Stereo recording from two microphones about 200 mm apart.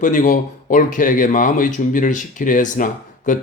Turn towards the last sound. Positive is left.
turn(degrees=40)  # may be behind; listen again after turning